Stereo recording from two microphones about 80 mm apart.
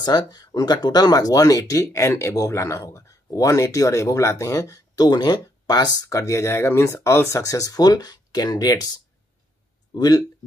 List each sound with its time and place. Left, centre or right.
0.0 s speech: left
5.0 s speech: left
6.0 s speech: left